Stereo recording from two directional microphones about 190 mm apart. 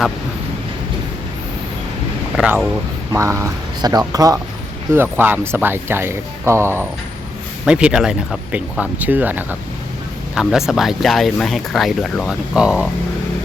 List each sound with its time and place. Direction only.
2.4 s speech: 5° right (ahead or behind)